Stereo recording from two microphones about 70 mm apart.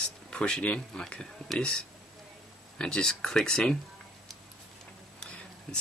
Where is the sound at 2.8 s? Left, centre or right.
Centre.